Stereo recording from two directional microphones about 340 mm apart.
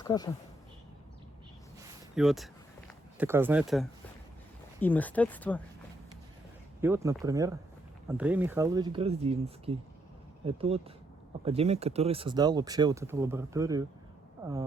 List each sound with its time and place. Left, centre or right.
0.0 s speech: centre
2.1 s a sound: centre
4.8 s speech: centre
6.8 s speech: centre